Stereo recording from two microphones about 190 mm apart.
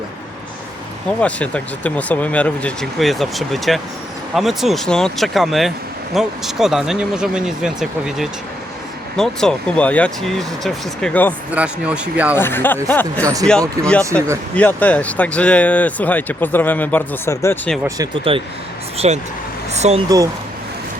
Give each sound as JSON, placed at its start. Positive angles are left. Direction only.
{"t": 1.2, "sound": "speech", "side_deg": 5}
{"t": 11.5, "sound": "speech", "side_deg": -5}
{"t": 12.4, "sound": "speech", "side_deg": 10}
{"t": 17.8, "sound": "speech", "side_deg": -20}